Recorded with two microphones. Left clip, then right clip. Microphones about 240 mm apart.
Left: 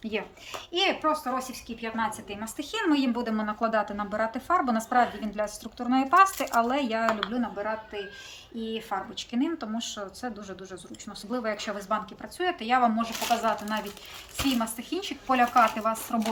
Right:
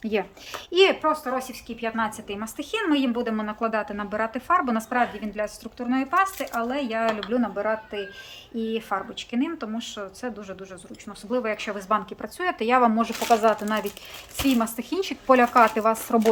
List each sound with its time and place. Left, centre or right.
0.0 s a woman's voice: right; by 7.0 s centre
7.3 s a woman's voice: right